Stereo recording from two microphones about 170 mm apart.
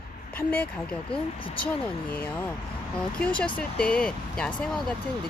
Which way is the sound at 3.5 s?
5° left (ahead or behind).